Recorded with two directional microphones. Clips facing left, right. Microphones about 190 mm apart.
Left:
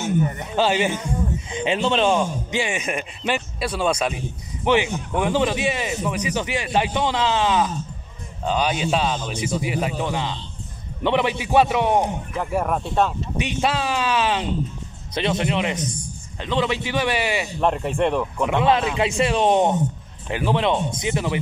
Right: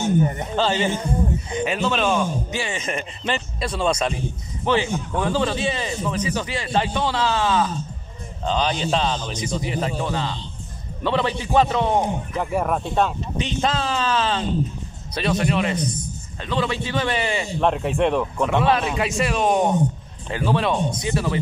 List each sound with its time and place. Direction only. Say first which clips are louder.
0.0 s a sound: right 2 dB; 30° right (ahead or behind)
0.6 s a man's voice: left 2 dB; 10° left (ahead or behind)
1.5 s a man's voice: left 4 dB; 25° left (ahead or behind)
12.4 s a man's voice: even; centre (ahead or behind)
18.4 s a man's voice: left 1 dB; 15° left (ahead or behind)